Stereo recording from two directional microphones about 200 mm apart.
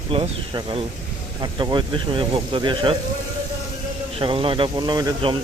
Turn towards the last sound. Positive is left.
turn(degrees=-20)  # may be behind; listen again after turning